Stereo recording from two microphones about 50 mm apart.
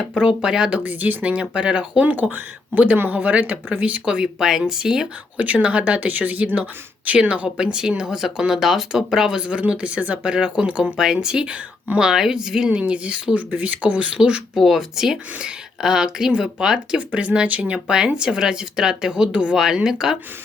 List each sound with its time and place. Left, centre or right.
0.1 s speech: centre
0.8 s speech: right
2.3 s speech: right; by 5.0 s centre
5.4 s speech: right
14.5 s speech: centre
17.0 s speech: right